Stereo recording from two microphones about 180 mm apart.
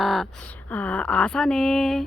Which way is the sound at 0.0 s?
Centre (ahead or behind).